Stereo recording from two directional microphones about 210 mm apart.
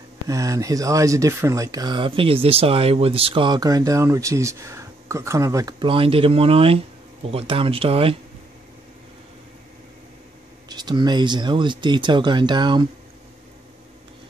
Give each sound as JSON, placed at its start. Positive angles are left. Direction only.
{"t": 0.3, "sound": "speech", "side_deg": -15}
{"t": 10.7, "sound": "speech", "side_deg": -20}